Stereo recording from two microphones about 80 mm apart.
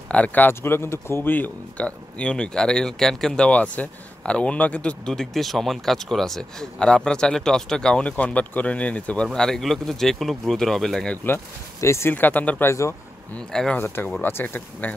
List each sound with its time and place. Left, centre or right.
0.1 s speech: centre
0.6 s speech: left; by 11.1 s centre
11.2 s speech: left
12.1 s speech: left
12.6 s speech: left
13.5 s speech: centre
13.7 s speech: left